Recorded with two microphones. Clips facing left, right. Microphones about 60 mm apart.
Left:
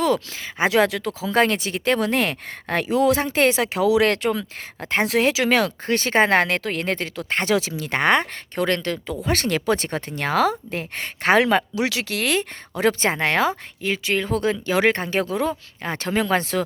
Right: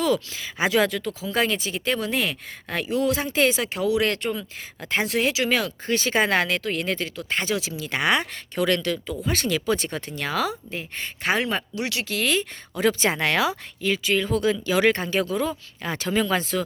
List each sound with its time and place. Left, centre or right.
0.0 s speech: left
0.7 s a woman's voice: left
2.9 s speech: left
3.2 s a woman's voice: left
4.8 s speech: left
5.0 s speech: left
9.2 s a woman's voice: left
13.1 s speech: left